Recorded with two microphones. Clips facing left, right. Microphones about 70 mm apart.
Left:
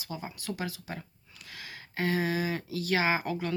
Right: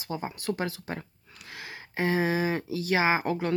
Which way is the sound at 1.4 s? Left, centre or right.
Right.